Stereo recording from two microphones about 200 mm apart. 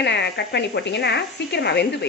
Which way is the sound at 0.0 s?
60° left (ahead or behind).